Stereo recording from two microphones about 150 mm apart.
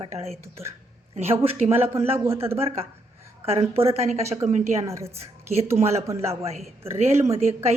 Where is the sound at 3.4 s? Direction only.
40° right (ahead or behind).